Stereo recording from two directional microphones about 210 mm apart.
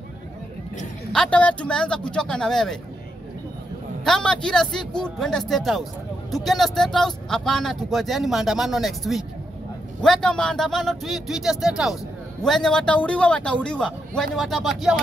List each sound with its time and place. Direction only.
1.1 s speech: 5° left (ahead or behind)
4.0 s speech: 5° left (ahead or behind)